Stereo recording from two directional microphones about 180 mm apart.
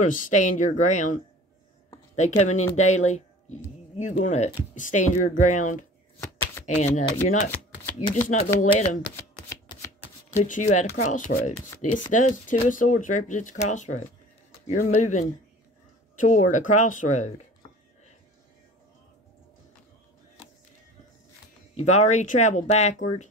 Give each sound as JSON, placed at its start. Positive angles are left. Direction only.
{"t": 0.0, "sound": "speech", "side_deg": 45}
{"t": 2.1, "sound": "speech", "side_deg": 40}
{"t": 8.3, "sound": "speech", "side_deg": 40}
{"t": 9.1, "sound": "chopping", "side_deg": 15}
{"t": 10.3, "sound": "speech", "side_deg": 45}
{"t": 21.7, "sound": "speech", "side_deg": 40}